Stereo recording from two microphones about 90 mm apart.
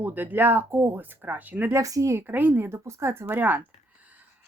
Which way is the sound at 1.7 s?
40° right (ahead or behind).